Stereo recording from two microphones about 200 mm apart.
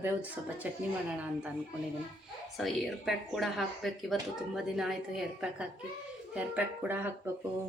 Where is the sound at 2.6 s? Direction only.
Centre (ahead or behind).